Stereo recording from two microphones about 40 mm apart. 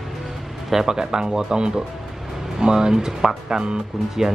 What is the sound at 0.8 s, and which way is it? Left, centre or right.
Speech, centre.